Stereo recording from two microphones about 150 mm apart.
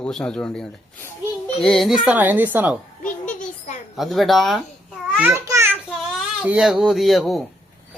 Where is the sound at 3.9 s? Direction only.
Centre (ahead or behind).